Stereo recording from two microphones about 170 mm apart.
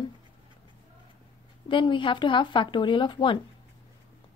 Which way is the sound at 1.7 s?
30° left (ahead or behind).